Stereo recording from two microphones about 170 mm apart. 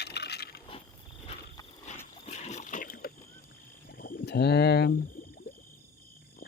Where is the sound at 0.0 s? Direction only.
75° left (ahead or behind).